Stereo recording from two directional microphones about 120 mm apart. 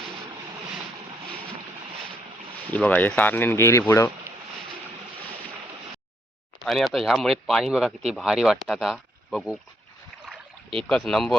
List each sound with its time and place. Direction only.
2.7 s speech: 10° left (ahead or behind)
6.6 s speech: centre (ahead or behind)
10.8 s speech: 5° left (ahead or behind)